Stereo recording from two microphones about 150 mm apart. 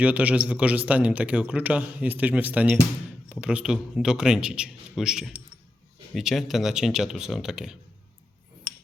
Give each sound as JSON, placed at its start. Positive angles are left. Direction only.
{"t": 0.0, "sound": "a man's voice", "side_deg": -10}